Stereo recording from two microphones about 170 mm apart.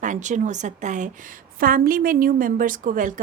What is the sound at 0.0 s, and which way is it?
A woman's voice, 45° right (ahead or behind).